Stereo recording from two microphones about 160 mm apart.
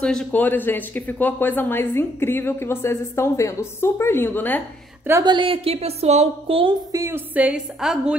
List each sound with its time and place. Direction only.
0.0 s speech: 5° left (ahead or behind)
5.2 s a woman's voice: 30° right (ahead or behind)
6.9 s a woman's voice: 15° right (ahead or behind)